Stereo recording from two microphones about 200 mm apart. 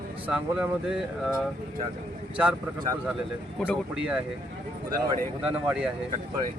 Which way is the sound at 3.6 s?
Centre (ahead or behind).